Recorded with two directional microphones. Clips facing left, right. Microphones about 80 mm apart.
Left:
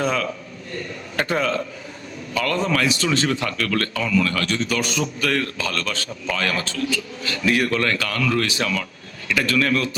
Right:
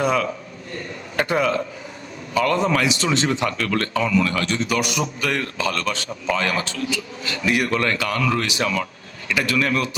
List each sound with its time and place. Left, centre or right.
0.0 s a man's voice: centre